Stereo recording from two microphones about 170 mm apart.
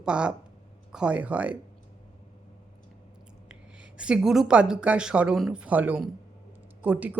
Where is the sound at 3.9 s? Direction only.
5° right (ahead or behind).